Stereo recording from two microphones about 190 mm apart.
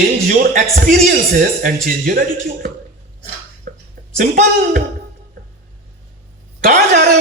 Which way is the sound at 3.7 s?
50° right (ahead or behind).